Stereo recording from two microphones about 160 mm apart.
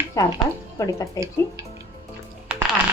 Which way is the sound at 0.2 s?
20° left (ahead or behind).